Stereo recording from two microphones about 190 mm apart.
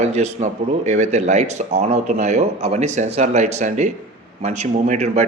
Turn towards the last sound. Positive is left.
turn(degrees=-35)  # may be behind; listen again after turning